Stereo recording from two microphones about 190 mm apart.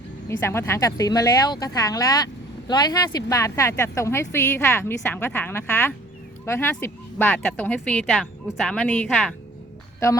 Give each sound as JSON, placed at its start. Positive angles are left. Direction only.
{"t": 0.3, "sound": "speech", "side_deg": 15}